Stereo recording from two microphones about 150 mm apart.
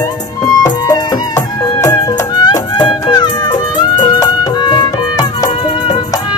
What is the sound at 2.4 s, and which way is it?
Music, 30° left (ahead or behind).